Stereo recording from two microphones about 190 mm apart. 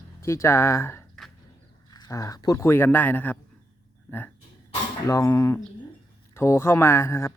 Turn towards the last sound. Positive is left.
turn(degrees=15)  # may be behind; listen again after turning